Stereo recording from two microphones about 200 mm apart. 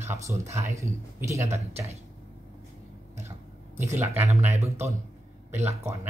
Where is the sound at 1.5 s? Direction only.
30° right (ahead or behind).